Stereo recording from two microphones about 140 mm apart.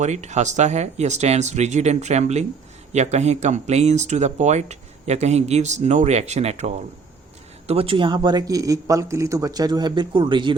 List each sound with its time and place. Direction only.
0.0 s speech: 55° right (ahead or behind); by 10.5 s 35° right (ahead or behind)